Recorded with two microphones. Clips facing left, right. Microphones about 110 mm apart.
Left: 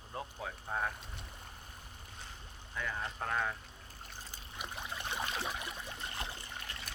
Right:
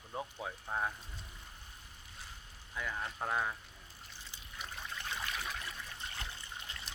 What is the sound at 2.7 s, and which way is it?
Speech, 5° right (ahead or behind).